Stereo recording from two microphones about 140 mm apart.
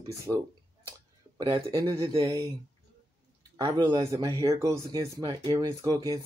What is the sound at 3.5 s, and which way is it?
Speech, 25° right (ahead or behind).